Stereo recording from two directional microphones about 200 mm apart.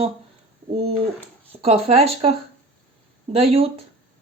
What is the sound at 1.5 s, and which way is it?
Speech, 30° right (ahead or behind).